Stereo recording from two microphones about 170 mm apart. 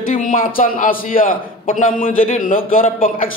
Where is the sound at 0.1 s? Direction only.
50° left (ahead or behind).